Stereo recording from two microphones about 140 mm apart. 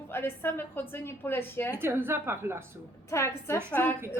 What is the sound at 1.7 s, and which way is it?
Speech, 15° right (ahead or behind).